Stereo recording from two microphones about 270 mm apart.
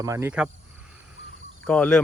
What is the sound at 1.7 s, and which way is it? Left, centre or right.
Speech, centre.